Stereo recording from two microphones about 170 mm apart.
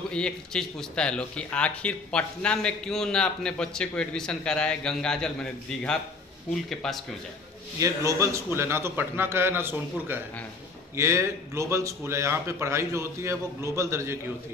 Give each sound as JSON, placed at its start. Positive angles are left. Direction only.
{"t": 0.1, "sound": "speech", "side_deg": 5}
{"t": 7.8, "sound": "speech", "side_deg": -20}